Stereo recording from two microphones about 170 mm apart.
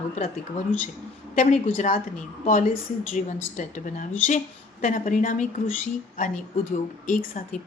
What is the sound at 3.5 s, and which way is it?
A woman's voice, 45° left (ahead or behind).